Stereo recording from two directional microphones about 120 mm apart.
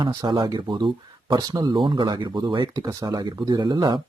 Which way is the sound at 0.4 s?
35° right (ahead or behind).